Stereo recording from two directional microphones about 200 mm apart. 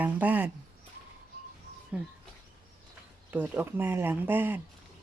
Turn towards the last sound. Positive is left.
turn(degrees=-10)  # may be behind; listen again after turning